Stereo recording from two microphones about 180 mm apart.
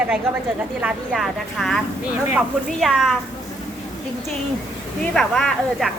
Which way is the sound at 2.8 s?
Centre (ahead or behind).